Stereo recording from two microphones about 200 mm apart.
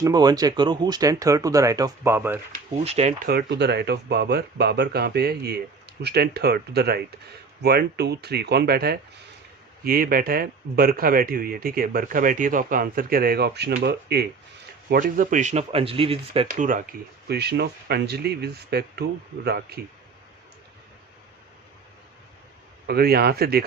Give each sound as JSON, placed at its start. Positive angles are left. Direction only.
{"t": 0.0, "sound": "speech", "side_deg": -20}
{"t": 2.8, "sound": "speech", "side_deg": -35}
{"t": 3.2, "sound": "speech", "side_deg": -55}
{"t": 14.8, "sound": "speech", "side_deg": -40}
{"t": 16.5, "sound": "speech", "side_deg": -40}
{"t": 17.2, "sound": "speech", "side_deg": -55}
{"t": 22.9, "sound": "speech", "side_deg": -50}